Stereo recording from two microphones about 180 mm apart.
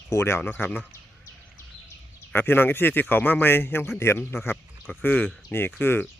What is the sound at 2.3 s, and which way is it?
Speech, 10° left (ahead or behind).